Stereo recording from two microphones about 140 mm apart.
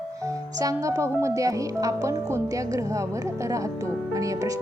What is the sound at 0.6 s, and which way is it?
A woman's voice, 25° right (ahead or behind).